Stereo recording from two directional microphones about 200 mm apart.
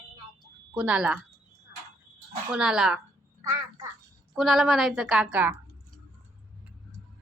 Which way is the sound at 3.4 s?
15° right (ahead or behind).